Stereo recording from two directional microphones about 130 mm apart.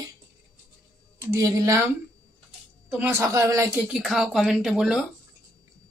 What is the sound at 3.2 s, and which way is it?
Speech, 25° right (ahead or behind).